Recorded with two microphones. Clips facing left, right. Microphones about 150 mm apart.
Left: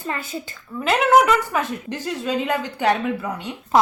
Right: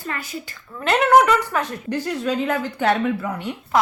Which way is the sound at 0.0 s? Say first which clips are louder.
Left 2 dB; 25° left (ahead or behind).